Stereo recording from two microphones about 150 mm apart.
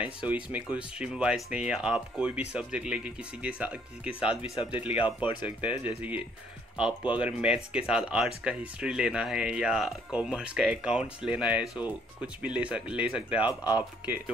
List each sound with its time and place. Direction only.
0.3 s speech: 10° right (ahead or behind)
4.6 s speech: 35° left (ahead or behind)
5.6 s speech: 10° right (ahead or behind)
7.2 s speech: 5° right (ahead or behind)
13.5 s speech: 25° left (ahead or behind)
14.0 s speech: 10° right (ahead or behind)